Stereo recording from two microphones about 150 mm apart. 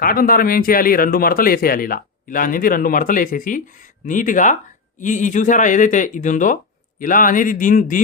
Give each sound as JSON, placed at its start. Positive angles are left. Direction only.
{"t": 0.0, "sound": "a man's voice", "side_deg": 70}